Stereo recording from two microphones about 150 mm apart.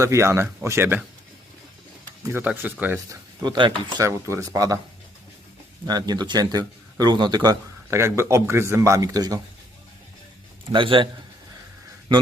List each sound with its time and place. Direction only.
0.0 s speech: 20° right (ahead or behind)
2.2 s speech: 15° right (ahead or behind)
3.4 s a man's voice: 30° right (ahead or behind)
5.8 s a man's voice: 25° right (ahead or behind)
10.7 s a man's voice: 35° right (ahead or behind)